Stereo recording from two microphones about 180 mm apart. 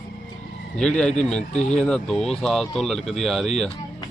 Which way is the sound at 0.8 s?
5° left (ahead or behind).